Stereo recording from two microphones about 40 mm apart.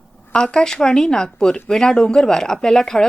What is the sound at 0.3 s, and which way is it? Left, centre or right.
Speech, centre.